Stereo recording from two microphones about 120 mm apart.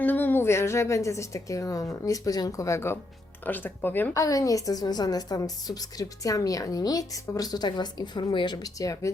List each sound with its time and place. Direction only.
0.0 s a woman's voice: 15° left (ahead or behind)
4.1 s a woman's voice: 30° left (ahead or behind)